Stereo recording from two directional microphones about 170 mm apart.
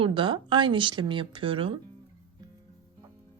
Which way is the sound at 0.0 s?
30° right (ahead or behind).